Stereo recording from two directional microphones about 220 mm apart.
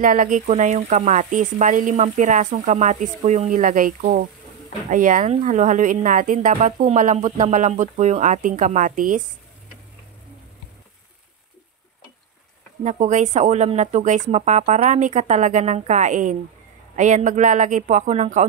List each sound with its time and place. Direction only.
0.0 s speech: 40° right (ahead or behind)
12.8 s speech: 35° right (ahead or behind)